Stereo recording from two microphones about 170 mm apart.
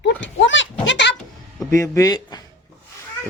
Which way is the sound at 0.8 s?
90° left.